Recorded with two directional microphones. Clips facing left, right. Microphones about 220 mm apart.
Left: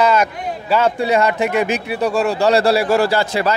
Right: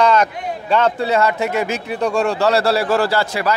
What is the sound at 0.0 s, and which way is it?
Speech, 5° left (ahead or behind).